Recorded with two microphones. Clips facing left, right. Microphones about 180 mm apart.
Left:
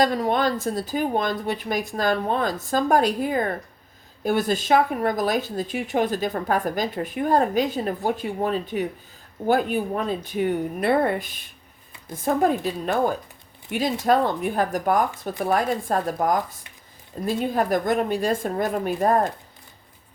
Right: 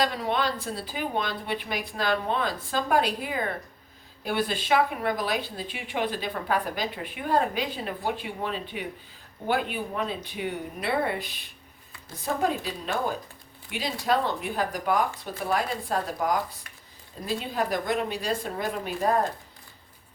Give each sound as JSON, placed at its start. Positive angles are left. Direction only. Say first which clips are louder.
{"t": 0.0, "sound": "speech", "louder": "left 6 dB", "side_deg": 45}